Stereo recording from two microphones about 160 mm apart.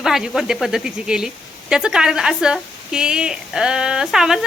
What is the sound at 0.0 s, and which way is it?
Speech, centre (ahead or behind).